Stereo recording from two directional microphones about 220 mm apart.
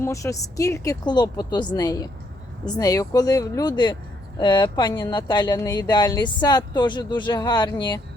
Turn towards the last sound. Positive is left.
turn(degrees=20)  # may be behind; listen again after turning